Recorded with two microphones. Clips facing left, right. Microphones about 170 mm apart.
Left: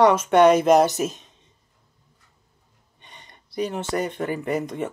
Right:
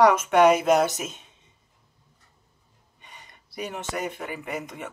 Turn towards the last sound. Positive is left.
turn(degrees=35)  # may be behind; listen again after turning